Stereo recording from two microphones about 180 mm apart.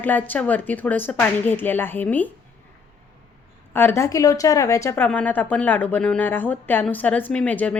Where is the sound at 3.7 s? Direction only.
10° left (ahead or behind).